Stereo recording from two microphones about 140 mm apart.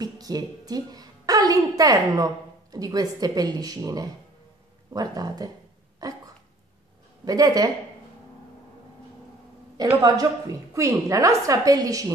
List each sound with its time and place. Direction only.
0.0 s a woman's voice: 25° right (ahead or behind)
6.0 s dog: 25° right (ahead or behind)
7.2 s a woman's voice: 25° right (ahead or behind)
9.8 s a woman's voice: 25° right (ahead or behind)